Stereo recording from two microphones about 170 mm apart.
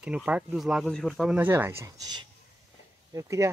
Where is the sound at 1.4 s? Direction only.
15° right (ahead or behind).